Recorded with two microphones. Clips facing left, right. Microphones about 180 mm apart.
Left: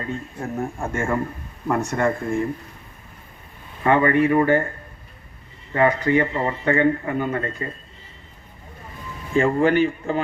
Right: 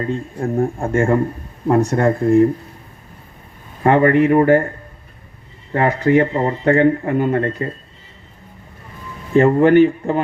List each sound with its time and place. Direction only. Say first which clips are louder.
0.3 s speech: right 9 dB; 35° right (ahead or behind)
3.8 s speech: right 5 dB; 55° right (ahead or behind)
4.4 s speech: right 5 dB; 40° right (ahead or behind)
5.7 s speech: right 4 dB; 50° right (ahead or behind)
9.3 s a man's voice: right 7 dB; 65° right (ahead or behind)